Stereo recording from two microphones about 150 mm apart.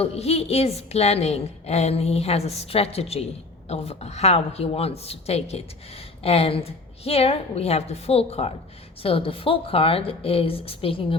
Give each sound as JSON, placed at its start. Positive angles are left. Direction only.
{"t": 0.0, "sound": "a woman's voice", "side_deg": 45}